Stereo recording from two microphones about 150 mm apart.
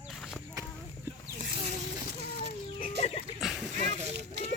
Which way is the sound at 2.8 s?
45° left (ahead or behind).